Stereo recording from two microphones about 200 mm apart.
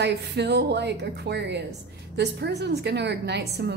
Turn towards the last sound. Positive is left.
turn(degrees=-55)  # may be behind; listen again after turning